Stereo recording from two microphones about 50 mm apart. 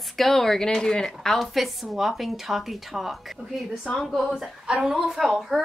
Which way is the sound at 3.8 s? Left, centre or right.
Centre.